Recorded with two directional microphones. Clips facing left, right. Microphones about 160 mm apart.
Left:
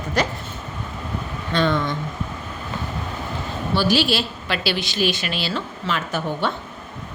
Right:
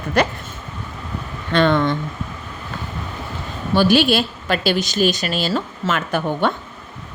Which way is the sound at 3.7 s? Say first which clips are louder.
Right 5 dB; 55° right (ahead or behind).